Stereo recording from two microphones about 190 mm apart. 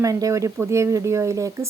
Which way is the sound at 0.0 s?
15° right (ahead or behind).